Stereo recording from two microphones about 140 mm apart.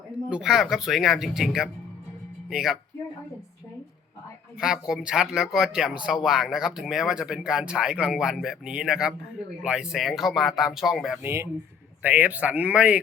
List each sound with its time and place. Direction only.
0.3 s speech: 5° right (ahead or behind)
4.6 s speech: 5° right (ahead or behind)
11.2 s speech: 15° right (ahead or behind)